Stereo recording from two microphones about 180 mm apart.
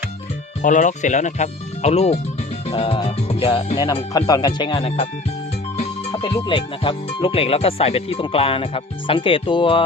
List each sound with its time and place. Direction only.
0.6 s speech: 45° left (ahead or behind)
6.1 s speech: 25° left (ahead or behind)